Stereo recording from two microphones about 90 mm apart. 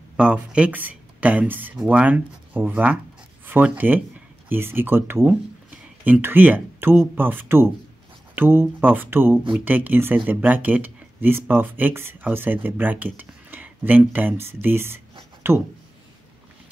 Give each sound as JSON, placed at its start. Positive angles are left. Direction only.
{"t": 0.2, "sound": "speech", "side_deg": -10}